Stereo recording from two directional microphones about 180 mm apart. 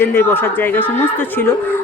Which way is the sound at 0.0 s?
10° left (ahead or behind).